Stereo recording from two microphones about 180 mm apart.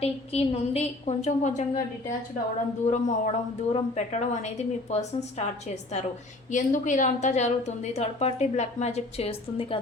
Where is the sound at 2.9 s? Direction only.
35° left (ahead or behind).